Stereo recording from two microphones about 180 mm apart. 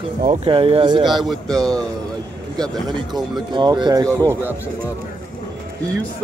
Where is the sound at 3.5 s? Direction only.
25° right (ahead or behind).